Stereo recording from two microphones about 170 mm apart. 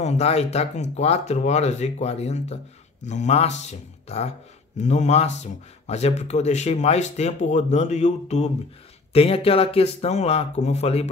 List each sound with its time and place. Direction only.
0.0 s speech: 40° left (ahead or behind)